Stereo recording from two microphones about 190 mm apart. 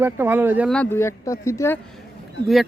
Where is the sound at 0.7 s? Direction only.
10° left (ahead or behind).